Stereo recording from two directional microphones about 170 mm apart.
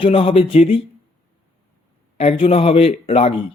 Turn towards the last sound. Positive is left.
turn(degrees=40)  # may be behind; listen again after turning